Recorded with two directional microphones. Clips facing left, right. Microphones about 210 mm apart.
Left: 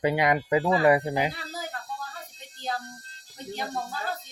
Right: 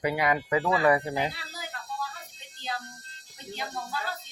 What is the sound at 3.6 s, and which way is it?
Speech, 45° left (ahead or behind).